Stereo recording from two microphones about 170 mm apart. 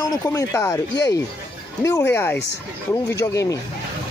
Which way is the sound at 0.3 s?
15° left (ahead or behind).